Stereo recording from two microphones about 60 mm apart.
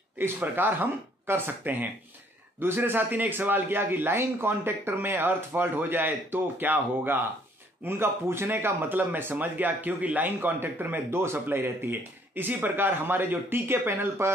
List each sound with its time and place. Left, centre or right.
0.4 s speech: right